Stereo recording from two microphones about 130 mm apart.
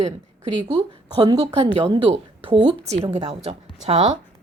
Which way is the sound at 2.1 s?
45° right (ahead or behind).